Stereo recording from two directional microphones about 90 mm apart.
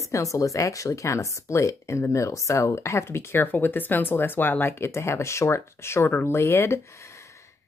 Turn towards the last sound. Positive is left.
turn(degrees=30)  # may be behind; listen again after turning